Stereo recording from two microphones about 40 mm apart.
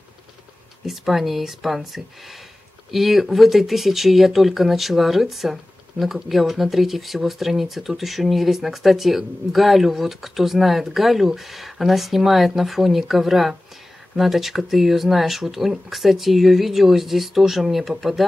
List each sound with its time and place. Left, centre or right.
0.8 s speech: centre